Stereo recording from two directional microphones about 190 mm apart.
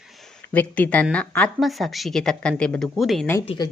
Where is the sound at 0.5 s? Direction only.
10° left (ahead or behind).